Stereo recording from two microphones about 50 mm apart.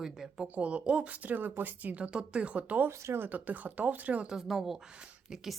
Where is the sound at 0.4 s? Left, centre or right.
Right.